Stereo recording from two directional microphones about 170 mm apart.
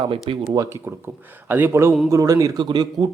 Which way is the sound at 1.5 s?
15° right (ahead or behind).